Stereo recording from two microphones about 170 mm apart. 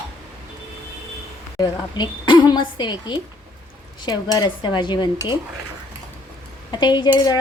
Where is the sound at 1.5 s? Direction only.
25° left (ahead or behind).